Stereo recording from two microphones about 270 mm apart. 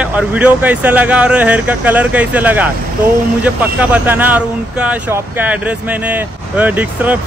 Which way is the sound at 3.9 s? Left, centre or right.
Centre.